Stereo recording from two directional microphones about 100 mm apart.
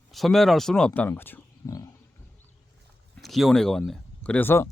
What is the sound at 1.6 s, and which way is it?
Wild animals, 40° left (ahead or behind).